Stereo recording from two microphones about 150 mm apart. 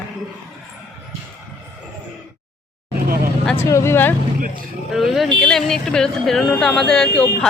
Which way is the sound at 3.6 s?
15° left (ahead or behind).